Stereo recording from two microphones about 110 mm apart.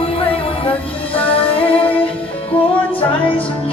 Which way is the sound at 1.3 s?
55° left (ahead or behind).